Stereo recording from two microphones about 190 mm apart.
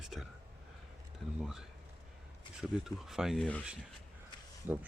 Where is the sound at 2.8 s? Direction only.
Centre (ahead or behind).